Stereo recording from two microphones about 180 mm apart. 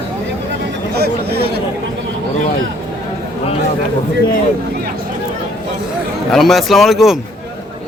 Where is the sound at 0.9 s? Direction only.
65° right (ahead or behind).